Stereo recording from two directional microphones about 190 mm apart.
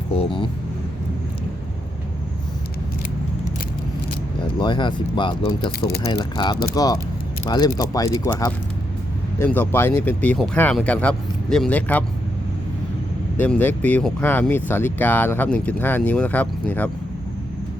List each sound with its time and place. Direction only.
0.1 s vehicle: 30° left (ahead or behind)
4.5 s speech: 25° left (ahead or behind); by 12.0 s 10° left (ahead or behind)
13.3 s speech: 10° left (ahead or behind)